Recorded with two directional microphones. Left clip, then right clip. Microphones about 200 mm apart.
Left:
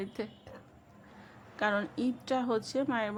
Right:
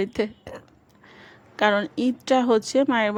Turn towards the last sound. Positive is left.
turn(degrees=-35)  # may be behind; listen again after turning